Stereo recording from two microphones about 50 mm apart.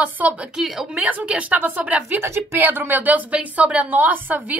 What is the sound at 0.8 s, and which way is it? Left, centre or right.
Speech, right.